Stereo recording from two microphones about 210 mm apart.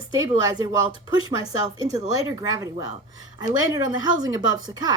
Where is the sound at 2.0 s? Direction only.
15° right (ahead or behind).